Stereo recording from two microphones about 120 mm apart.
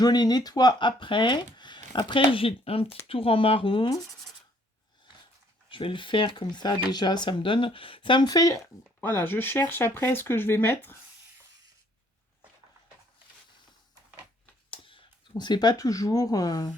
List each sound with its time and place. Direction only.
0.0 s speech: 35° left (ahead or behind)
5.6 s speech: 45° left (ahead or behind)
9.0 s speech: 15° left (ahead or behind)
14.7 s speech: 45° left (ahead or behind)